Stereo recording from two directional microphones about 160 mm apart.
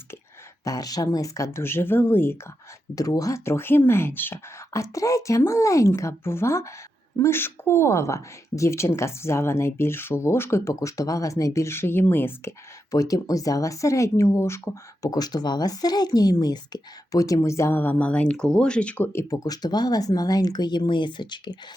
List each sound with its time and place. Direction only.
0.6 s speech: 25° left (ahead or behind)